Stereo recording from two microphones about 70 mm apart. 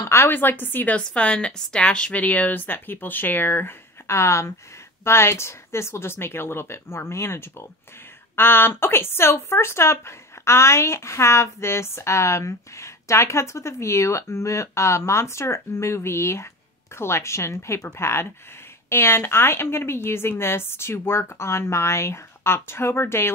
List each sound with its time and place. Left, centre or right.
0.0 s a woman's voice: left
4.1 s speech: left